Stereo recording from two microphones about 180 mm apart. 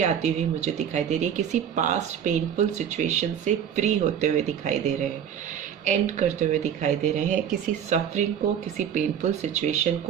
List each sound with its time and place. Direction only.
0.0 s speech: 40° right (ahead or behind)
5.8 s speech: 40° right (ahead or behind)